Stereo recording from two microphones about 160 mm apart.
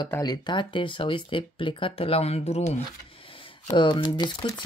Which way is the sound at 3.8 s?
30° left (ahead or behind).